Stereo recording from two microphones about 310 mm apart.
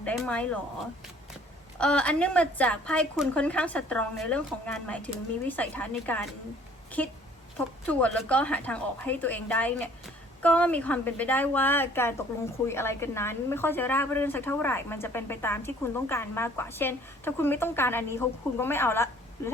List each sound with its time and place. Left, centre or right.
0.0 s a woman's voice: centre
1.8 s a woman's voice: centre